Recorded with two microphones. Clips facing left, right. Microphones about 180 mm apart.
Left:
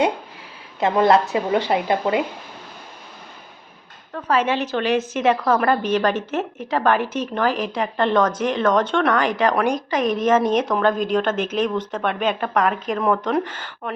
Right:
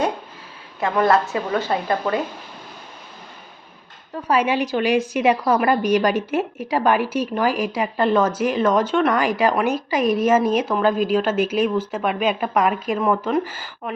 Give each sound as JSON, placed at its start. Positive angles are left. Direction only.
{"t": 0.8, "sound": "speech", "side_deg": 20}
{"t": 4.1, "sound": "speech", "side_deg": -15}